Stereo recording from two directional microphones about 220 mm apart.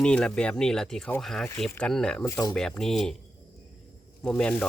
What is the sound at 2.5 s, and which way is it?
Speech, centre (ahead or behind).